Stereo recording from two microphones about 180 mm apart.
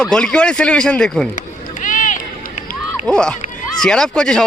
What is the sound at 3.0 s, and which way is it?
A man's voice, 5° left (ahead or behind).